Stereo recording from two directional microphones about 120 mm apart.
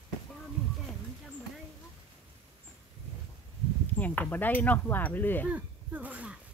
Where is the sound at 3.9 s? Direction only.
15° left (ahead or behind).